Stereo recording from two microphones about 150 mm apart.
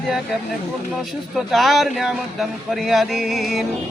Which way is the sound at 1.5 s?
Centre (ahead or behind).